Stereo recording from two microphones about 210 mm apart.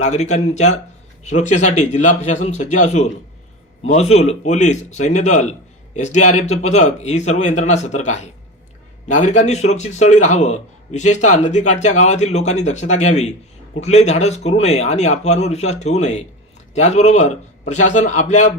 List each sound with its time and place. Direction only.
0.0 s a man's voice: 35° left (ahead or behind)